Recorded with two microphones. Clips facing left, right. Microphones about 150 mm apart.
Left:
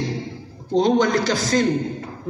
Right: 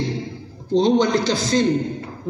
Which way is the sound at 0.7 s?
30° right (ahead or behind).